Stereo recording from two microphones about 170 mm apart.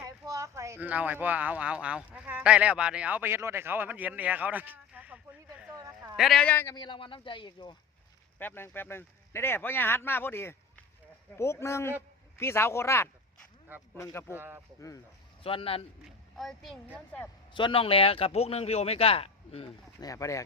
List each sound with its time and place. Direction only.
0.0 s speech: 20° right (ahead or behind)
5.7 s a sound: 20° right (ahead or behind)
6.1 s speech: centre (ahead or behind)
6.7 s speech: 30° left (ahead or behind)
8.4 s speech: 10° left (ahead or behind)
14.3 s speech: 15° right (ahead or behind)
14.8 s speech: 20° left (ahead or behind)
15.4 s a man's voice: 35° left (ahead or behind)
16.0 s speech: centre (ahead or behind)
17.5 s a man's voice: 30° left (ahead or behind)
20.0 s speech: 20° left (ahead or behind)